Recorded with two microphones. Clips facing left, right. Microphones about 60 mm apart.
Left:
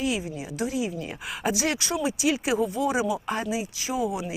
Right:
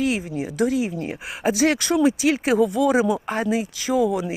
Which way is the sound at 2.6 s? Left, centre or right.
Right.